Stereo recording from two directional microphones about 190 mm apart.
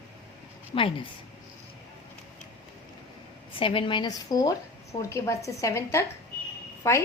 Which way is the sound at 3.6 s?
25° left (ahead or behind).